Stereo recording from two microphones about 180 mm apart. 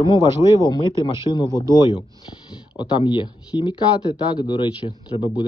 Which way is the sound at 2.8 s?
25° left (ahead or behind).